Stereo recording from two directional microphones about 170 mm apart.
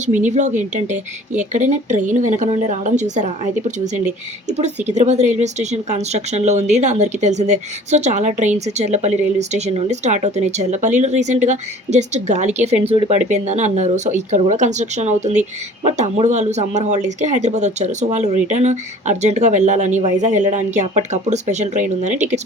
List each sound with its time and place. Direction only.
0.0 s speech: 45° right (ahead or behind)
4.9 s speech: 40° right (ahead or behind)